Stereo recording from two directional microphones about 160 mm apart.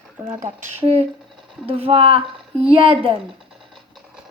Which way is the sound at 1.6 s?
35° right (ahead or behind).